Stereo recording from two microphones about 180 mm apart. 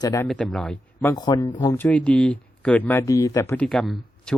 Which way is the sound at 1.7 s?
5° left (ahead or behind).